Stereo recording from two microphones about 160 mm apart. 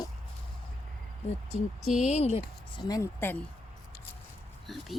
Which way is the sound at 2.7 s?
25° left (ahead or behind).